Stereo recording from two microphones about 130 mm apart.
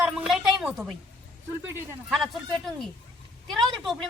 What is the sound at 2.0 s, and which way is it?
A woman's voice, centre (ahead or behind).